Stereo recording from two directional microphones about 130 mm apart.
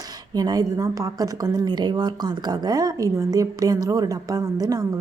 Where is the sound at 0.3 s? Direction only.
30° right (ahead or behind).